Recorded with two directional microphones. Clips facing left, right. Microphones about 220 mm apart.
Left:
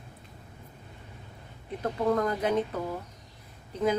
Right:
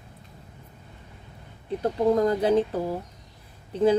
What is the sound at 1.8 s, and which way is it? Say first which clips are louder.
Speech: right 5 dB; 30° right (ahead or behind).